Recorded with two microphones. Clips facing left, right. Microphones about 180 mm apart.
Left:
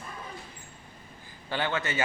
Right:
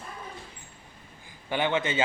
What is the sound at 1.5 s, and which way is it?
Speech, 15° right (ahead or behind).